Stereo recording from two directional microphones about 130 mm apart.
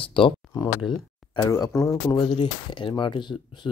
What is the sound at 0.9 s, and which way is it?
Speech, 25° left (ahead or behind).